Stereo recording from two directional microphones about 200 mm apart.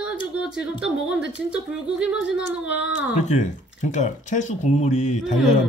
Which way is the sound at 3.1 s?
35° left (ahead or behind).